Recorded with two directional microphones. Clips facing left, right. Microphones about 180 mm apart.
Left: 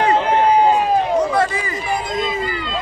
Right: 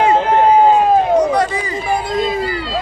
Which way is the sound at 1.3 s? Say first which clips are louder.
Right 2 dB; 20° right (ahead or behind).